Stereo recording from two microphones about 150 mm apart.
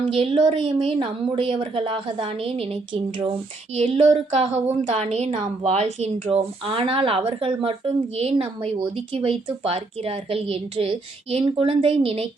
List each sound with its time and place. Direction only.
0.0 s a woman's voice: 35° right (ahead or behind)
3.8 s a woman's voice: 40° right (ahead or behind)